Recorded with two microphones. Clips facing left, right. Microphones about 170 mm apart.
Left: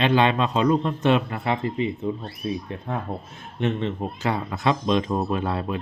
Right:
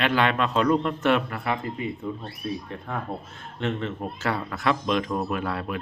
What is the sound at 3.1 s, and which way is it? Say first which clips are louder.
Speech: left 1 dB; 20° left (ahead or behind).